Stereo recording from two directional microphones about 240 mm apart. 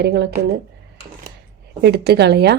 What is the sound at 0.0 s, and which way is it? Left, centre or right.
Speech, right.